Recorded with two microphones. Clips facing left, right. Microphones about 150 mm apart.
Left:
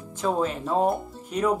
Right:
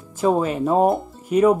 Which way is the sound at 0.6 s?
50° right (ahead or behind).